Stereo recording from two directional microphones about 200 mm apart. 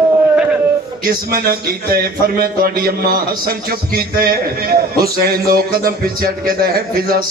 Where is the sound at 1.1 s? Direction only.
50° right (ahead or behind).